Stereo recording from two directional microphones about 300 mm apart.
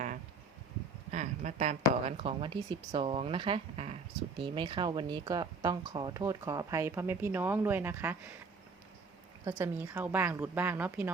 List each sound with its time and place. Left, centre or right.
1.1 s speech: right; by 8.3 s centre
9.4 s speech: centre